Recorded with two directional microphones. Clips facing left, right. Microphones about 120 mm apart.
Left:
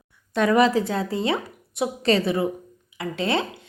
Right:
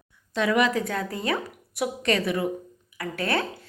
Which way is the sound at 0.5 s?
35° left (ahead or behind).